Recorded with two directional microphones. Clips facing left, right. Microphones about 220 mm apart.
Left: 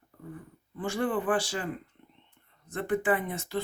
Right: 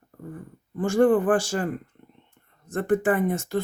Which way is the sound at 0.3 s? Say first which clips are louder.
Right 11 dB; 45° right (ahead or behind).